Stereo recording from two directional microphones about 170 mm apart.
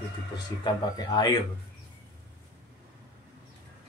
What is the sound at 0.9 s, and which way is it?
Speech, 25° left (ahead or behind).